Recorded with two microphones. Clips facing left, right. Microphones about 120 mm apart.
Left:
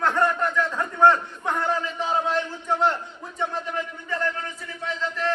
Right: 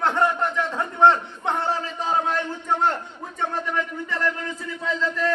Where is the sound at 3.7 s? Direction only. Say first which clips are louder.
Right 2 dB; 90° right.